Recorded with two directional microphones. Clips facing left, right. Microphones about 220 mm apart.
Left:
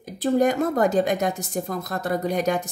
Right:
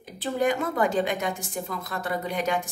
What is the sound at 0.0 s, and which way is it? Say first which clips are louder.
Speech: left 6 dB; 40° left (ahead or behind).